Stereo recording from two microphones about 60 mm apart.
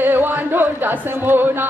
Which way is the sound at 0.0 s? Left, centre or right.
Right.